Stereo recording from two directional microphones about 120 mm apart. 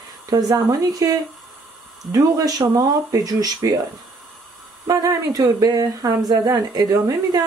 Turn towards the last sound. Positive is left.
turn(degrees=-35)  # may be behind; listen again after turning